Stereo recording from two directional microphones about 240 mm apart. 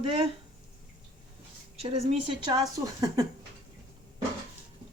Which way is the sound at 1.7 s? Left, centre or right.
Right.